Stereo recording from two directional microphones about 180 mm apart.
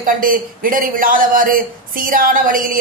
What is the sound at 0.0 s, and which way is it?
A man's voice, 50° right (ahead or behind).